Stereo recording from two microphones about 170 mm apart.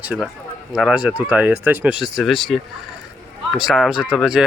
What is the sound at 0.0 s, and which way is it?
Speech, 10° right (ahead or behind).